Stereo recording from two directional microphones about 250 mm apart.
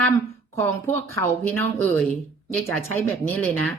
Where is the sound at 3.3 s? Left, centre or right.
Centre.